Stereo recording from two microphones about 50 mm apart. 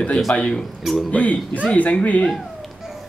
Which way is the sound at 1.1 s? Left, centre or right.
Left.